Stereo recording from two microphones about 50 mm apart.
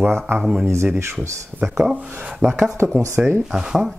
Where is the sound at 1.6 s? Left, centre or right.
Centre.